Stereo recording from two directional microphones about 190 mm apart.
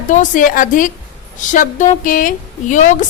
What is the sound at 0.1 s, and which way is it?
Speech, 45° left (ahead or behind).